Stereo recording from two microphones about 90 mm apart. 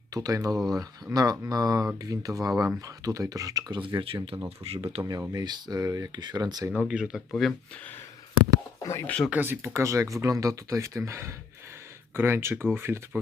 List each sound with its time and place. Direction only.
0.1 s speech: 40° right (ahead or behind)
0.5 s speech: centre (ahead or behind)
1.1 s speech: 45° right (ahead or behind)
2.5 s speech: 10° right (ahead or behind)
2.8 s speech: 40° right (ahead or behind)
3.8 s speech: 70° right (ahead or behind); by 5.0 s 90° right
5.3 s speech: 50° right (ahead or behind)
6.7 s speech: 10° right (ahead or behind)
7.4 s speech: centre (ahead or behind)
8.8 s speech: 35° left (ahead or behind)
9.0 s speech: 15° left (ahead or behind)
9.3 s speech: 25° right (ahead or behind)
9.7 s speech: 35° right (ahead or behind)